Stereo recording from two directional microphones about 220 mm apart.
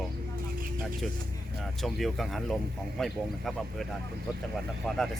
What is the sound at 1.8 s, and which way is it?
Speech, centre (ahead or behind).